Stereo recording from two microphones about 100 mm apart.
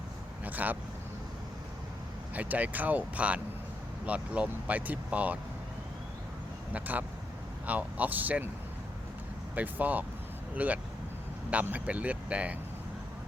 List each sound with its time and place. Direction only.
0.4 s vehicle: 15° right (ahead or behind)
2.3 s speech: 15° right (ahead or behind)
6.7 s speech: 15° right (ahead or behind)
9.6 s speech: 15° right (ahead or behind)